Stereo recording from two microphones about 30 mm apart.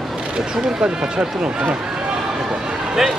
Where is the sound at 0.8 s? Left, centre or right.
Right.